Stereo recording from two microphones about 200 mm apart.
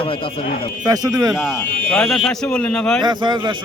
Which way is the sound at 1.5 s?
5° left (ahead or behind).